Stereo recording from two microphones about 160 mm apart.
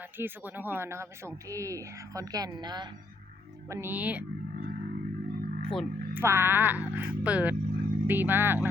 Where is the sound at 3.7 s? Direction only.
15° right (ahead or behind).